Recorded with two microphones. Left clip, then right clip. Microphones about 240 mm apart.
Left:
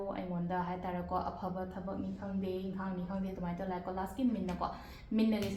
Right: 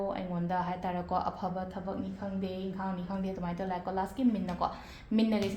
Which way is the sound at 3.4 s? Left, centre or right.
Right.